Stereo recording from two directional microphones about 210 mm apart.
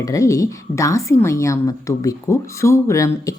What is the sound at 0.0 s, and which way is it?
A woman's voice, 15° left (ahead or behind).